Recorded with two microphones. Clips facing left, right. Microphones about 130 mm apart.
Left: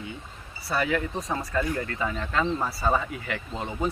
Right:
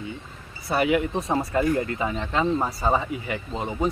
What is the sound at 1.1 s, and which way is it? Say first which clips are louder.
Speech: right 5 dB; 30° right (ahead or behind).